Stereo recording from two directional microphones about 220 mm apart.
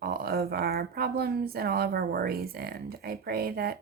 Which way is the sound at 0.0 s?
45° right (ahead or behind).